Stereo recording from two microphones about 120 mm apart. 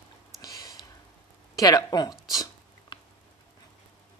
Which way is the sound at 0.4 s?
30° left (ahead or behind).